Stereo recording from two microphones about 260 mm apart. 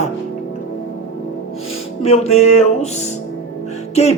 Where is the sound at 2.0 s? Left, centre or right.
Left.